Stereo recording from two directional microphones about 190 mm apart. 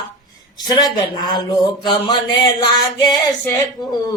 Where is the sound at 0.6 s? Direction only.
20° left (ahead or behind).